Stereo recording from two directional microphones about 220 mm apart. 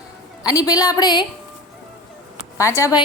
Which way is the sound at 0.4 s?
15° left (ahead or behind).